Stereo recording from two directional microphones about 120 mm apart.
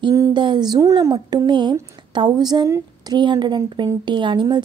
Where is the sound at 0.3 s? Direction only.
40° right (ahead or behind).